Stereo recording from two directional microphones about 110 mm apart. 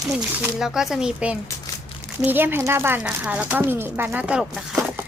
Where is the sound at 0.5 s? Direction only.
5° right (ahead or behind).